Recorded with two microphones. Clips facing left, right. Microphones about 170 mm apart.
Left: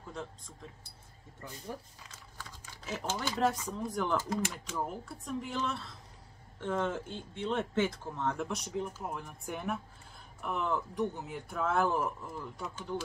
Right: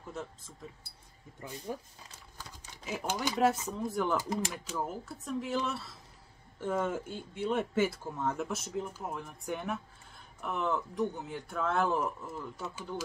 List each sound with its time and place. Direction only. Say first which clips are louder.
0.1 s speech: right 1 dB; 5° right (ahead or behind)
1.4 s speech: right 3 dB; 15° right (ahead or behind)
2.8 s speech: right 2 dB; 10° right (ahead or behind)